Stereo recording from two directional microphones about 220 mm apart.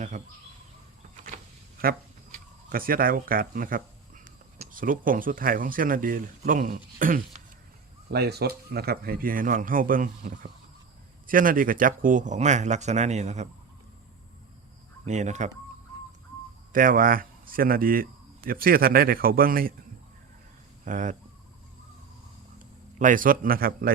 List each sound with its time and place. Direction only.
0.1 s speech: 35° right (ahead or behind)
2.6 s speech: 40° right (ahead or behind)
15.0 s speech: 30° right (ahead or behind)
16.7 s speech: 40° right (ahead or behind)
20.8 s speech: 35° right (ahead or behind)
22.5 s a man's voice: 35° right (ahead or behind)